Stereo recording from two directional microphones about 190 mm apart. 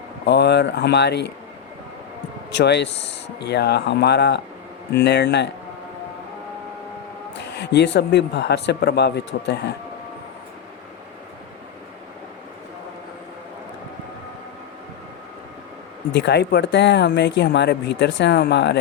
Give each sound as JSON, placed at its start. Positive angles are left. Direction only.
{"t": 0.3, "sound": "speech", "side_deg": 60}
{"t": 2.5, "sound": "speech", "side_deg": 65}
{"t": 7.6, "sound": "speech", "side_deg": 65}
{"t": 16.1, "sound": "speech", "side_deg": 65}